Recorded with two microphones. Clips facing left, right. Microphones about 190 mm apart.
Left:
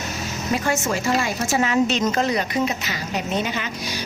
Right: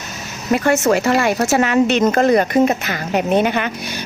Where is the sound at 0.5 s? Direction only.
65° right (ahead or behind).